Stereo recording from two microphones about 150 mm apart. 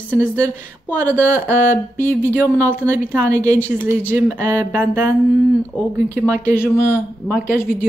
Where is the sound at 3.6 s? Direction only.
15° right (ahead or behind).